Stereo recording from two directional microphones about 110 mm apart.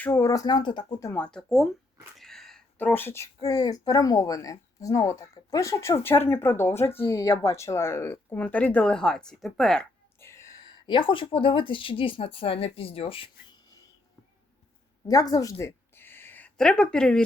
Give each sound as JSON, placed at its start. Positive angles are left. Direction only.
{"t": 0.0, "sound": "speech", "side_deg": 25}
{"t": 1.1, "sound": "speech", "side_deg": 10}
{"t": 2.1, "sound": "a sound", "side_deg": 5}
{"t": 2.7, "sound": "speech", "side_deg": 15}
{"t": 3.4, "sound": "speech", "side_deg": 35}
{"t": 10.2, "sound": "speech", "side_deg": 25}
{"t": 15.0, "sound": "a sound", "side_deg": 35}
{"t": 16.6, "sound": "speech", "side_deg": 5}